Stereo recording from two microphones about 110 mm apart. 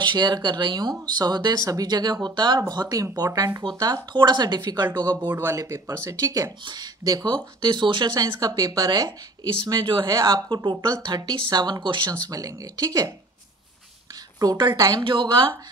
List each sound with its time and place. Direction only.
0.0 s speech: 40° right (ahead or behind)
5.3 s speech: 20° right (ahead or behind); by 8.1 s 45° right (ahead or behind)
8.4 s speech: 35° right (ahead or behind)
14.4 s speech: 40° right (ahead or behind)
15.0 s speech: 50° right (ahead or behind)